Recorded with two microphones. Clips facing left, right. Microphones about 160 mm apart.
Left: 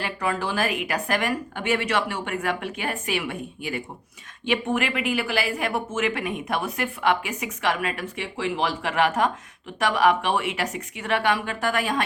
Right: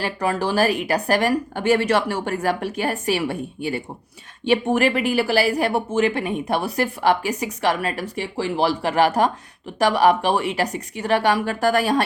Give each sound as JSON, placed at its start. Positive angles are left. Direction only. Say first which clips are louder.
{"t": 0.0, "sound": "speech", "louder": "right 4 dB", "side_deg": -40}